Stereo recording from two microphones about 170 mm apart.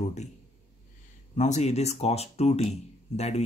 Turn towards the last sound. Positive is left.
turn(degrees=40)  # may be behind; listen again after turning